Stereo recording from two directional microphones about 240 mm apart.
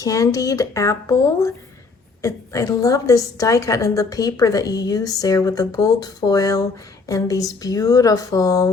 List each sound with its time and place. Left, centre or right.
0.0 s a woman's voice: centre